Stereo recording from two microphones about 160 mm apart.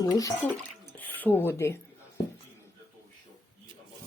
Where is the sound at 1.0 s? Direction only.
10° left (ahead or behind).